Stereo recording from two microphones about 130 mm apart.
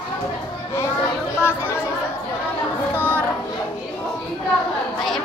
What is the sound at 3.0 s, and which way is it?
Chatter, 15° right (ahead or behind).